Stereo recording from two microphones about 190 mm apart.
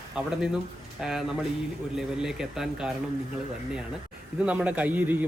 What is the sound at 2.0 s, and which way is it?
Speech, centre (ahead or behind).